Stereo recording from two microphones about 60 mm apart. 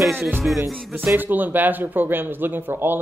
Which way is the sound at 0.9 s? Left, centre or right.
Right.